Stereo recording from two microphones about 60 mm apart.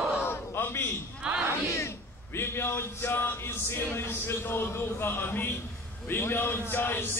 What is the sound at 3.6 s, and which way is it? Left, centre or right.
A man's voice, left.